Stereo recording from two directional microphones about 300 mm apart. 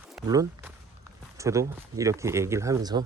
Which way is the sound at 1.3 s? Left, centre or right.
Centre.